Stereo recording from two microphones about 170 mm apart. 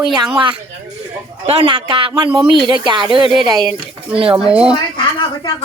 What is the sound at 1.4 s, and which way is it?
Speech, 35° right (ahead or behind).